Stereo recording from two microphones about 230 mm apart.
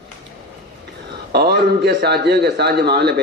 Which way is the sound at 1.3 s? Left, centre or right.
Right.